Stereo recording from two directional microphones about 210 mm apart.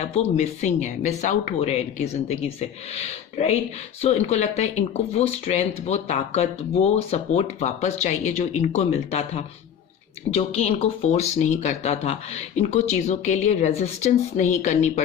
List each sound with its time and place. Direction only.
0.0 s speech: 30° left (ahead or behind)